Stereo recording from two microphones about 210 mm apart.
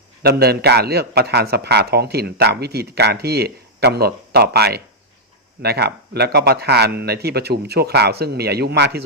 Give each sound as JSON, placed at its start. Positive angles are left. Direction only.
{"t": 0.2, "sound": "a man's voice", "side_deg": -50}